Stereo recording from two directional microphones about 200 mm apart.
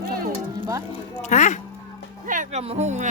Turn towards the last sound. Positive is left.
turn(degrees=-35)  # may be behind; listen again after turning